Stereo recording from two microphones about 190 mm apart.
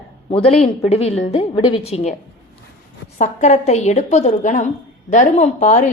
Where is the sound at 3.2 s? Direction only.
35° left (ahead or behind).